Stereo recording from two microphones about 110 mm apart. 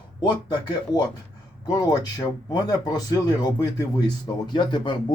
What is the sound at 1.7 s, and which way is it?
Speech, 35° left (ahead or behind).